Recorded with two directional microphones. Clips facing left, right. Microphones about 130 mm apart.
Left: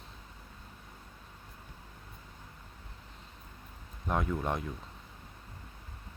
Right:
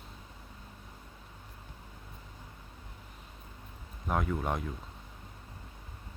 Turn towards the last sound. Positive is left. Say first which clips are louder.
# even
turn(degrees=0)  # may be behind; listen again after turning